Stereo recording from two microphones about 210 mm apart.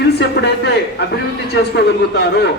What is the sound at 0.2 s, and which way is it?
Speech, 50° left (ahead or behind).